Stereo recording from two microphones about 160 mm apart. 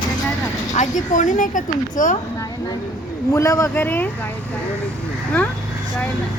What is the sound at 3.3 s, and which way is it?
Speech, 20° left (ahead or behind).